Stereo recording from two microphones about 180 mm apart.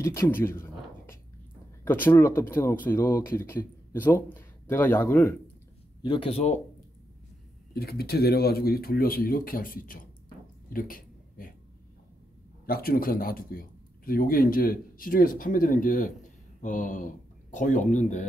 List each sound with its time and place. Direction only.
0.0 s speech: 15° left (ahead or behind)
1.9 s speech: 10° left (ahead or behind)
6.0 s speech: 30° left (ahead or behind)
7.7 s speech: 60° left (ahead or behind)
10.7 s a sound: 50° left (ahead or behind)
12.6 s speech: 55° left (ahead or behind)